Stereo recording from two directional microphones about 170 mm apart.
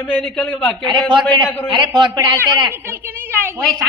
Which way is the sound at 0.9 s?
25° right (ahead or behind).